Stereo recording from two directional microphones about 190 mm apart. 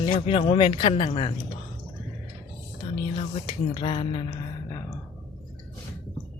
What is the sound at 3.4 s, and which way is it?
Speech, 30° left (ahead or behind).